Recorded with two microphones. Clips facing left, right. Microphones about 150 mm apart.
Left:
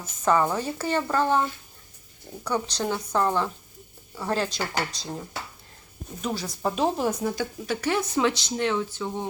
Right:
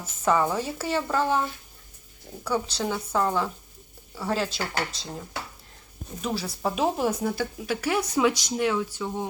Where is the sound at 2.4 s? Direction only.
5° right (ahead or behind).